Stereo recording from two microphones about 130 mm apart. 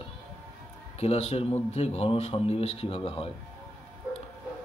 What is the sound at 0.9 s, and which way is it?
A man's voice, 50° left (ahead or behind).